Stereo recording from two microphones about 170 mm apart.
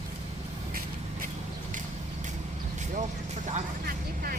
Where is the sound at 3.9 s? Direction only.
55° right (ahead or behind).